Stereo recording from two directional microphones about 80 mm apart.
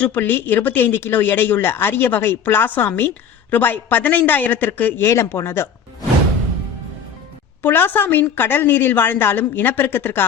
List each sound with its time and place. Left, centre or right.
0.0 s speech: left
7.6 s speech: left